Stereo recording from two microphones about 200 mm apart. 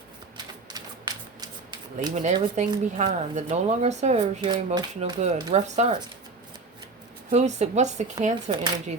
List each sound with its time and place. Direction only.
0.7 s shuffling cards: 20° right (ahead or behind)
2.1 s speech: 35° right (ahead or behind)
7.3 s speech: 35° right (ahead or behind)